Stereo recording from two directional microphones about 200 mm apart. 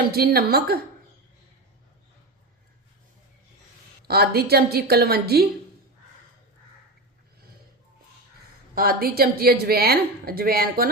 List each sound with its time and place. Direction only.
0.1 s speech: 50° right (ahead or behind)
4.1 s speech: 50° right (ahead or behind)
8.7 s speech: 45° right (ahead or behind)